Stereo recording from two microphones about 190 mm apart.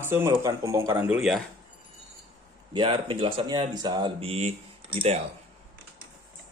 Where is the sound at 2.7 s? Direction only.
25° right (ahead or behind).